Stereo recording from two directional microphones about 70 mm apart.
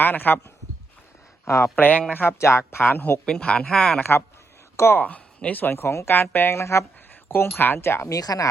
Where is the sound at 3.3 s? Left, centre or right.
Centre.